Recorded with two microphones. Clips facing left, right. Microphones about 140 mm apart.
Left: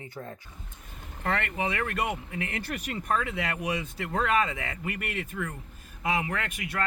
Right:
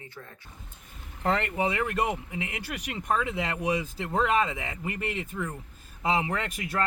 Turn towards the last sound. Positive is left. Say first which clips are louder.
# right 2 dB
turn(degrees=-35)  # may be behind; listen again after turning